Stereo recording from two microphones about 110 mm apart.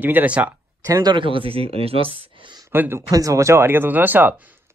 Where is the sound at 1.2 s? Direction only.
55° right (ahead or behind).